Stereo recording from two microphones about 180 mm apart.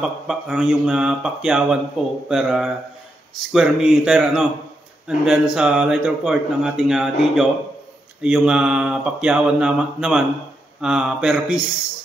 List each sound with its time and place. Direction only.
0.0 s speech: 5° right (ahead or behind)